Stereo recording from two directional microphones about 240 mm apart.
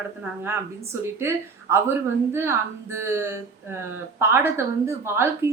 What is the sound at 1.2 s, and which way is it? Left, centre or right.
A woman's voice, centre.